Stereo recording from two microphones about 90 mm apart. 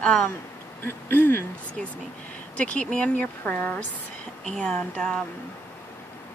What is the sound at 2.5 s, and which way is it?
Speech, 15° left (ahead or behind).